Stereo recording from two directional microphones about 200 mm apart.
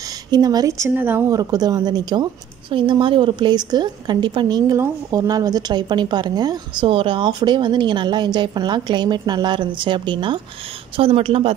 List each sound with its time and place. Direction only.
0.3 s a woman's voice: 20° right (ahead or behind)